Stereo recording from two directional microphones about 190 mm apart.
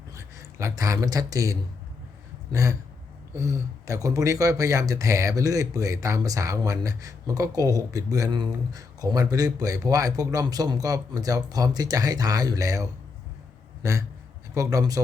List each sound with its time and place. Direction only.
0.1 s speech: 15° right (ahead or behind)